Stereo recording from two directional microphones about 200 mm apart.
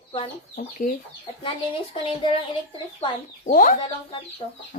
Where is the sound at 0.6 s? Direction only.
45° left (ahead or behind).